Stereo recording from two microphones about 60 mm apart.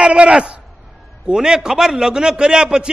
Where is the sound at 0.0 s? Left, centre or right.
Centre.